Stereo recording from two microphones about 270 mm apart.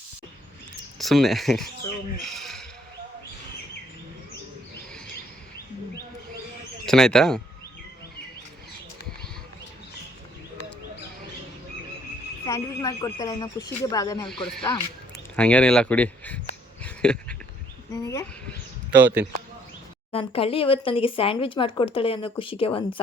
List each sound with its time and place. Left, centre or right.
0.9 s speech: centre
2.2 s a sound: centre
6.8 s speech: centre
12.5 s speech: centre
14.3 s speech: centre
16.8 s a sound: centre
17.9 s speech: centre
18.9 s speech: centre
20.1 s speech: left